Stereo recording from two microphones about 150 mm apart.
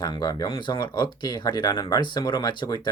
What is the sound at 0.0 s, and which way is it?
Speech, 25° left (ahead or behind).